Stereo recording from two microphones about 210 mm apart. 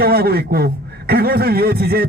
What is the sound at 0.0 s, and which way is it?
A man's voice, 50° right (ahead or behind).